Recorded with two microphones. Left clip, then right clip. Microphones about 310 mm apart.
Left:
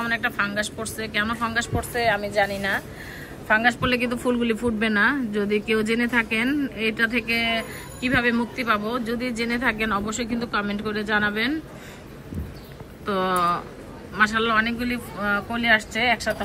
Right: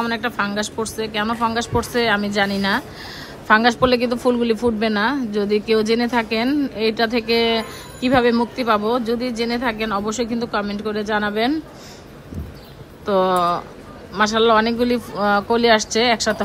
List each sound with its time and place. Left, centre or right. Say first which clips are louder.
0.0 s a woman's voice: right 2 dB; centre
13.0 s a woman's voice: right 5 dB; centre